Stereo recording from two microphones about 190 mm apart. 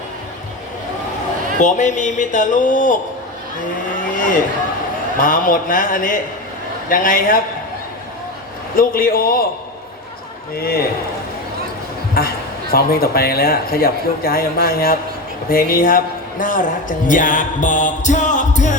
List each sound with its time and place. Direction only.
1.6 s music: 40° left (ahead or behind)
5.2 s a man's voice: 45° left (ahead or behind)
8.7 s a man's voice: 50° left (ahead or behind)
10.5 s a man's voice: 55° left (ahead or behind)
12.2 s a man's voice: 55° left (ahead or behind)
17.1 s music: 45° left (ahead or behind)